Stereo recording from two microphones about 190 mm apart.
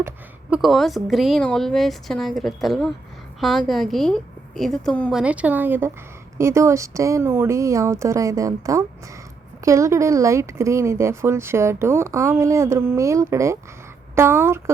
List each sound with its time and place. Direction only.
0.5 s a woman's voice: centre (ahead or behind)
5.2 s speech: 5° right (ahead or behind)